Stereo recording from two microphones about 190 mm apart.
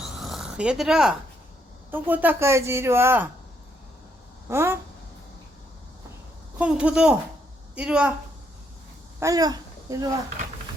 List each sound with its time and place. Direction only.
0.2 s purr: centre (ahead or behind)
1.9 s a woman's voice: 10° right (ahead or behind)
4.4 s a woman's voice: 10° right (ahead or behind)
6.6 s speech: 5° right (ahead or behind)
9.2 s speech: 20° right (ahead or behind)